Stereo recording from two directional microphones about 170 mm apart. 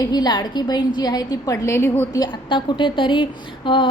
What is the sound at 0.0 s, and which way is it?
A woman's voice, 25° left (ahead or behind).